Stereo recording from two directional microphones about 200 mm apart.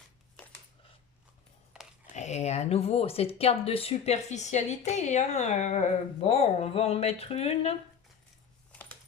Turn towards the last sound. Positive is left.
turn(degrees=30)  # may be behind; listen again after turning